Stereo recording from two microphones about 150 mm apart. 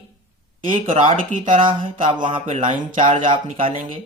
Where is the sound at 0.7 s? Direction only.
55° right (ahead or behind).